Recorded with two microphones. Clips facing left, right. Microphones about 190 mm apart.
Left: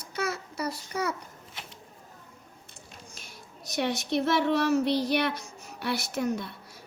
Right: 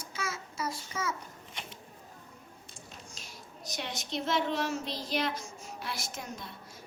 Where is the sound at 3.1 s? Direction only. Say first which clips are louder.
Left 1 dB; 60° left (ahead or behind).